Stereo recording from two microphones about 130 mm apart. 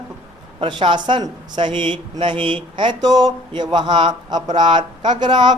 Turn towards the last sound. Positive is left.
turn(degrees=-35)  # may be behind; listen again after turning